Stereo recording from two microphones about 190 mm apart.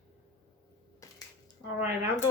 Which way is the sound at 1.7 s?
10° right (ahead or behind).